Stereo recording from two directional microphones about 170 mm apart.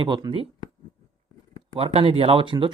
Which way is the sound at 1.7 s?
35° right (ahead or behind).